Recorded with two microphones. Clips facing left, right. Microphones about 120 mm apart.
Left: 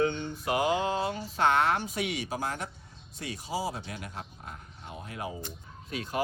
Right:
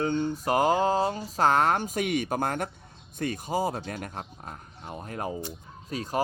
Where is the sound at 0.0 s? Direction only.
40° right (ahead or behind).